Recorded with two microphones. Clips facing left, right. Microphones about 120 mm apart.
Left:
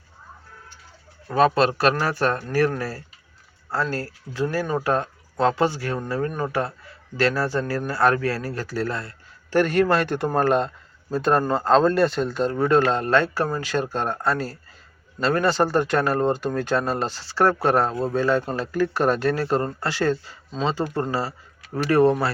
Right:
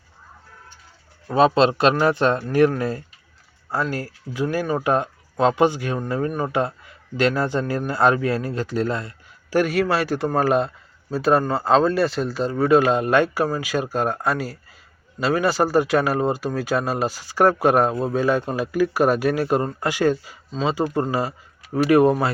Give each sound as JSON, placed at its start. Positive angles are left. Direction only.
{"t": 1.3, "sound": "a man's voice", "side_deg": -25}